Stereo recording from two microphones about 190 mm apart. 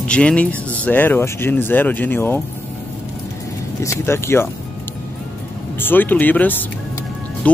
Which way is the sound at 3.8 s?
15° left (ahead or behind).